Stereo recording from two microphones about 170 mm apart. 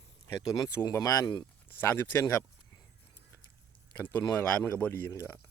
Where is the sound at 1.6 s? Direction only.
10° left (ahead or behind).